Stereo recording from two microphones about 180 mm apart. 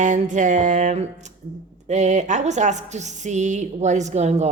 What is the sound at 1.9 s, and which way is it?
A woman's voice, 40° right (ahead or behind).